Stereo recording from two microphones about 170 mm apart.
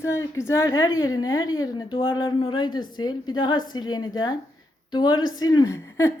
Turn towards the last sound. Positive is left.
turn(degrees=15)  # may be behind; listen again after turning